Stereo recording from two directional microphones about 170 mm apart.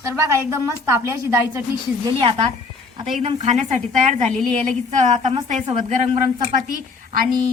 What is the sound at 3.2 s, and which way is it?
A woman's voice, 35° right (ahead or behind).